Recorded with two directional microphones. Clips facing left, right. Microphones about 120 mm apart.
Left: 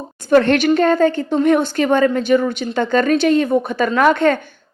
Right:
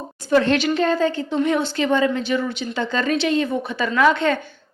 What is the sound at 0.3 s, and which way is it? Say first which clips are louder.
A woman's voice: left 5 dB; 60° left (ahead or behind).